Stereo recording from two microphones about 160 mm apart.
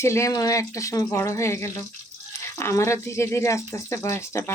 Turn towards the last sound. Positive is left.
turn(degrees=15)  # may be behind; listen again after turning